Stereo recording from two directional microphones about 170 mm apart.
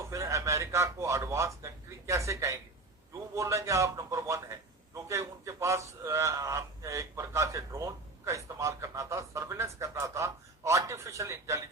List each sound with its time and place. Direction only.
0.0 s a man's voice: 15° right (ahead or behind)